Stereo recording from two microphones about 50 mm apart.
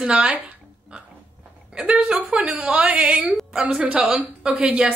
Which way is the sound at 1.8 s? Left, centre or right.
Right.